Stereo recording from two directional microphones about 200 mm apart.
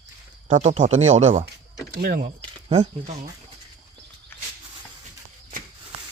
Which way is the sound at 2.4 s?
30° right (ahead or behind).